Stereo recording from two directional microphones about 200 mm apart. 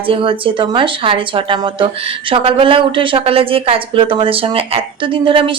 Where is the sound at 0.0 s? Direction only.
25° right (ahead or behind).